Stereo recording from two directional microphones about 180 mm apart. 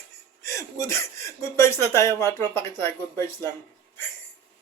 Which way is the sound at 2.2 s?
15° left (ahead or behind).